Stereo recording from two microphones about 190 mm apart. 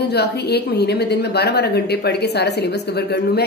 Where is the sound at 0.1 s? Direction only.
60° left (ahead or behind).